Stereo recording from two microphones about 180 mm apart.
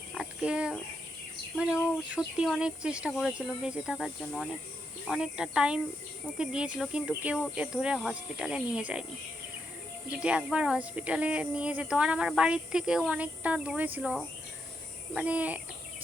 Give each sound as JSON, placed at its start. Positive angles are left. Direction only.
{"t": 0.1, "sound": "a sound", "side_deg": -5}
{"t": 2.1, "sound": "speech", "side_deg": -5}
{"t": 10.1, "sound": "speech", "side_deg": -5}